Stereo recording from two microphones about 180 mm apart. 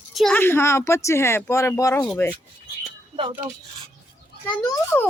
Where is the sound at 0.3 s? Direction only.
10° left (ahead or behind).